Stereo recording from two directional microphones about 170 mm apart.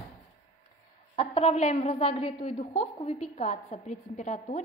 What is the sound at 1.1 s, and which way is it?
A woman's voice, 35° left (ahead or behind).